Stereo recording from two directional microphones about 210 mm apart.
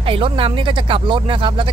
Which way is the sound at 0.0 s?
25° right (ahead or behind).